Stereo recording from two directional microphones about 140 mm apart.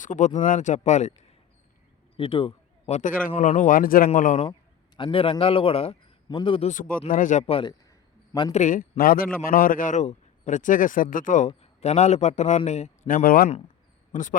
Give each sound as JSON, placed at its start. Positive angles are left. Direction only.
{"t": 0.0, "sound": "a man's voice", "side_deg": 60}
{"t": 2.1, "sound": "a man's voice", "side_deg": 40}
{"t": 2.8, "sound": "a man's voice", "side_deg": 60}
{"t": 4.9, "sound": "a man's voice", "side_deg": 40}
{"t": 6.7, "sound": "speech", "side_deg": 75}
{"t": 7.4, "sound": "a man's voice", "side_deg": 45}
{"t": 8.5, "sound": "a man's voice", "side_deg": 65}
{"t": 13.1, "sound": "a man's voice", "side_deg": 85}
{"t": 14.1, "sound": "speech", "side_deg": 70}